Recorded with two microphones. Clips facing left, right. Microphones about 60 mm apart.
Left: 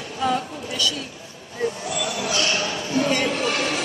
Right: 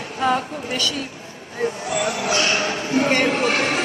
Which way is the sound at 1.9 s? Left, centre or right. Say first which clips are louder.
Right 6 dB; right.